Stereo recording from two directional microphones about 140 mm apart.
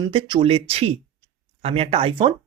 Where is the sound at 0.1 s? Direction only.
35° right (ahead or behind).